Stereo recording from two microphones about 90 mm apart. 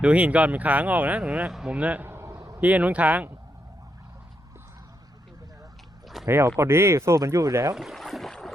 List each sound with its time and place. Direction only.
0.0 s speech: 15° right (ahead or behind)
2.0 s a sound: 30° right (ahead or behind)
2.6 s speech: 15° right (ahead or behind)
6.2 s speech: 30° right (ahead or behind)
7.8 s boat: centre (ahead or behind)